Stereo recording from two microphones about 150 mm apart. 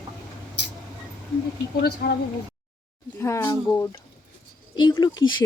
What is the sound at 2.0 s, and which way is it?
Speech, 90° left.